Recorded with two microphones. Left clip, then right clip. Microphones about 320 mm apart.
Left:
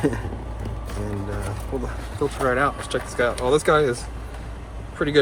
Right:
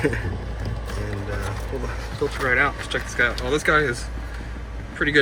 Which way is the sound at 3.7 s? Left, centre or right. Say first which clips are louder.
Right 1 dB; left.